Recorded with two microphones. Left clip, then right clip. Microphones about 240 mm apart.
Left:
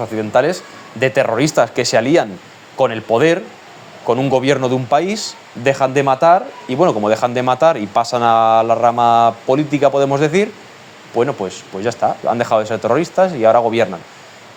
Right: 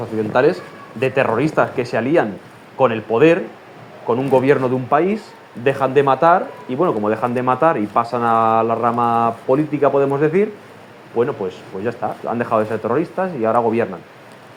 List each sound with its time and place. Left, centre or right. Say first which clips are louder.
0.0 s speech: left 1 dB; left